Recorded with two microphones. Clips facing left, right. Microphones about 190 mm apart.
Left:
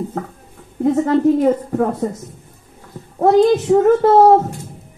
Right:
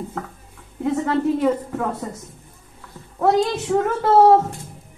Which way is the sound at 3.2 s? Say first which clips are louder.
Left 7 dB; 35° left (ahead or behind).